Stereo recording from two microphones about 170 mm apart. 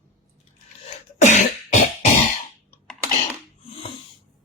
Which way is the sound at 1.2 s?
45° left (ahead or behind).